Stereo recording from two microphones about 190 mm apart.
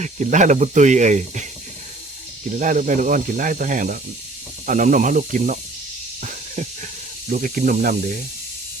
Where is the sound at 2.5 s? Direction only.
40° right (ahead or behind).